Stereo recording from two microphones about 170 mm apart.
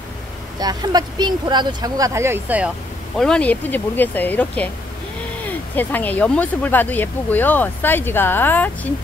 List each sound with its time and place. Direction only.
0.6 s speech: 25° right (ahead or behind)
3.2 s speech: 5° left (ahead or behind)